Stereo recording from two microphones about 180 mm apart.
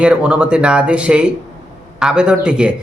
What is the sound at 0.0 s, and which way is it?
A man's voice, 5° right (ahead or behind).